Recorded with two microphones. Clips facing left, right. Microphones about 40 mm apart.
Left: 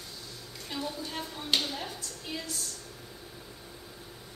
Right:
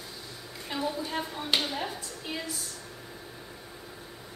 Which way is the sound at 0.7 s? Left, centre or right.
Centre.